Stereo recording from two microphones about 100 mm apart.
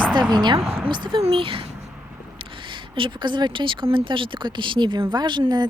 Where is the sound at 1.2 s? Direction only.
65° right (ahead or behind).